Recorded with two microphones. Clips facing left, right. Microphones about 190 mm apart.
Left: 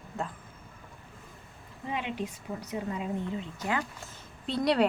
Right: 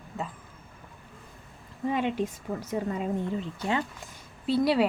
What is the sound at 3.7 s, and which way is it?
Speech, 25° right (ahead or behind).